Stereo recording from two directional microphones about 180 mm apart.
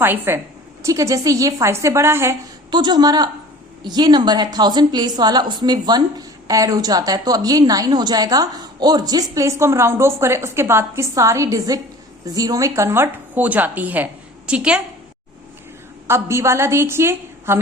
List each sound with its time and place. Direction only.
0.0 s a woman's voice: 10° right (ahead or behind)
2.6 s a woman's voice: 25° right (ahead or behind); by 14.8 s 5° right (ahead or behind)
16.0 s a woman's voice: 15° right (ahead or behind)